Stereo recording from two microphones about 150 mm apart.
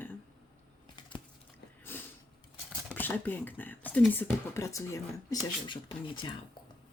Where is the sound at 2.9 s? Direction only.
10° left (ahead or behind); by 5.8 s 25° left (ahead or behind).